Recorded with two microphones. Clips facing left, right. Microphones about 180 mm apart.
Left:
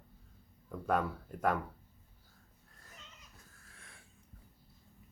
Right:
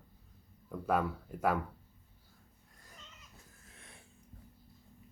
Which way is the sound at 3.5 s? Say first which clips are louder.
Right 2 dB; 20° right (ahead or behind).